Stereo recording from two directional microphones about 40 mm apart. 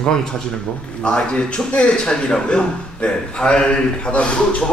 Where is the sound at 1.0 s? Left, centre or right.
Left.